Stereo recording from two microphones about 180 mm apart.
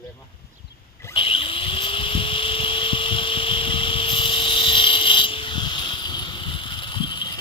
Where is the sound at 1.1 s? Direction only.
30° left (ahead or behind).